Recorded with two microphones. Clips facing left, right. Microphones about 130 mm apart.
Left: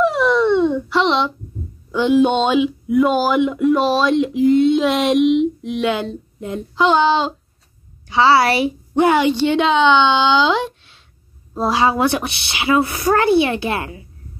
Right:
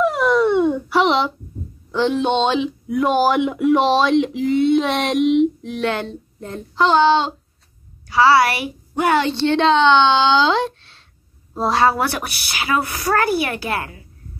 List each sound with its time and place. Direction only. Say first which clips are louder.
0.0 s dog: left 1 dB; centre (ahead or behind)
1.9 s a sound: left 4 dB; 5° left (ahead or behind)
8.1 s a woman's voice: left 1 dB; 25° left (ahead or behind)